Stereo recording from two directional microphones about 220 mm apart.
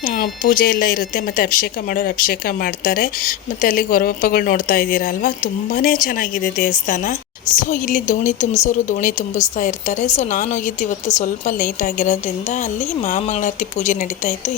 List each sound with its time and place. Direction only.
0.0 s speech: 40° left (ahead or behind)